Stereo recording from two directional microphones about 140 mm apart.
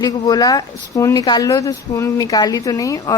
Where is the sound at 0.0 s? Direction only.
30° left (ahead or behind).